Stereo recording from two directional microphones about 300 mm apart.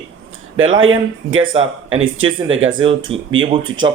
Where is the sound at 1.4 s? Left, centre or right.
Centre.